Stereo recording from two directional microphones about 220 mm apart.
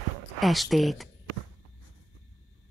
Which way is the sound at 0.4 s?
Centre (ahead or behind).